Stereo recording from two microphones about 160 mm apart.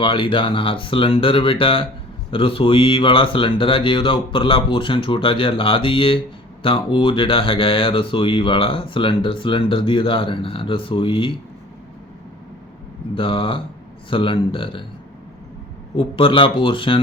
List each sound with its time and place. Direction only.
0.0 s speech: 30° left (ahead or behind)
13.1 s speech: 35° left (ahead or behind)
16.0 s speech: 30° left (ahead or behind)